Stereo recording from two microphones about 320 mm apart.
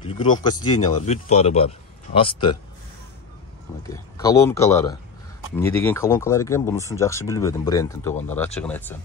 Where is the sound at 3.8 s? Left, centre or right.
Centre.